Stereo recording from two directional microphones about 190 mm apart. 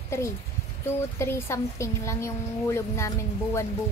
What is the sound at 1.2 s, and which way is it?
A woman's voice, 15° left (ahead or behind).